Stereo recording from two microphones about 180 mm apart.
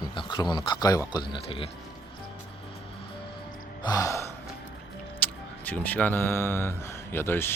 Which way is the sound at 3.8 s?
20° left (ahead or behind).